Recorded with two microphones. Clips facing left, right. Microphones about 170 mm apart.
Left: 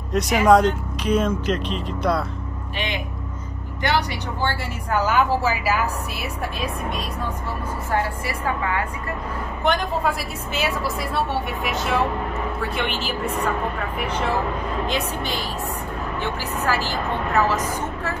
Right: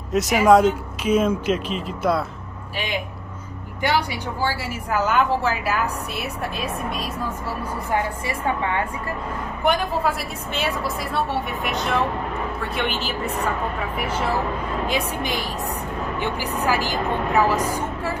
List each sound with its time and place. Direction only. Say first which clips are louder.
0.1 s speech: right 1 dB; centre (ahead or behind)
3.8 s speech: right 1 dB; 10° right (ahead or behind)
7.9 s a woman's voice: even; 25° right (ahead or behind)
9.7 s a woman's voice: right 1 dB; centre (ahead or behind)